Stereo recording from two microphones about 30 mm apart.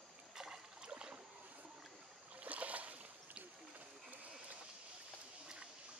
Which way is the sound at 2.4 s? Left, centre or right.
Right.